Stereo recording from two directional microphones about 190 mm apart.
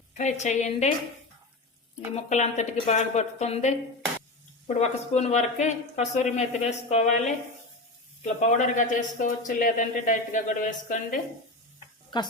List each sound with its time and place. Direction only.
0.1 s speech: 40° left (ahead or behind)
2.1 s speech: 35° left (ahead or behind)
8.2 s speech: 40° left (ahead or behind)